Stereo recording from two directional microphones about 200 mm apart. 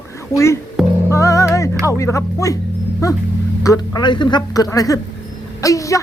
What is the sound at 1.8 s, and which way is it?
Speech, 15° left (ahead or behind).